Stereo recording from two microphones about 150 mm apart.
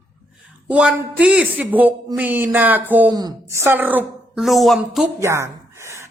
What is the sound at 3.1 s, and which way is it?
Speech, 25° right (ahead or behind).